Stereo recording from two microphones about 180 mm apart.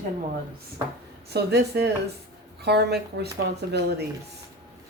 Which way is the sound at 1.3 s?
65° right (ahead or behind).